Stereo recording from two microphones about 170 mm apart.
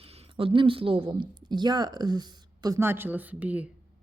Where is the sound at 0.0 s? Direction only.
35° right (ahead or behind).